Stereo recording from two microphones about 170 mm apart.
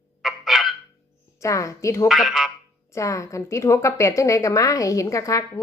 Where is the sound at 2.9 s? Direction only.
20° left (ahead or behind).